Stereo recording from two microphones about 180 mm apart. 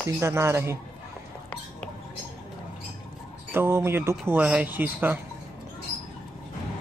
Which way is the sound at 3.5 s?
15° right (ahead or behind).